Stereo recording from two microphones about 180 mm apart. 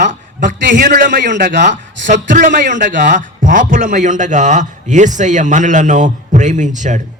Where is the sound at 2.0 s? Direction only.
45° right (ahead or behind).